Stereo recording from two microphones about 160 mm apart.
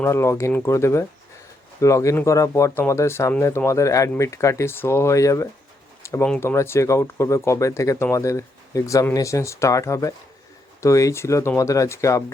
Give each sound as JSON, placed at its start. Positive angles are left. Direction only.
{"t": 0.0, "sound": "speech", "side_deg": 15}
{"t": 6.0, "sound": "a sound", "side_deg": 15}
{"t": 6.2, "sound": "speech", "side_deg": 10}